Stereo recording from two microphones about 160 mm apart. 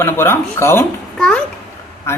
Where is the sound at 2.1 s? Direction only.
15° left (ahead or behind).